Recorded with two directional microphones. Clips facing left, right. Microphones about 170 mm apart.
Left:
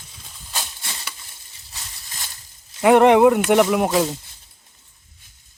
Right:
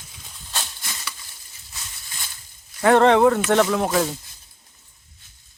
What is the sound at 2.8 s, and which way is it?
Speech, 15° left (ahead or behind).